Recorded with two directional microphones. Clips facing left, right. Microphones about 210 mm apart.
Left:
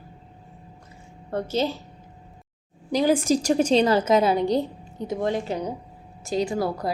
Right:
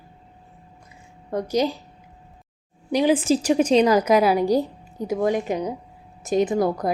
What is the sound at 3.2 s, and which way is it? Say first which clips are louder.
Speech: right 2 dB; 5° right (ahead or behind).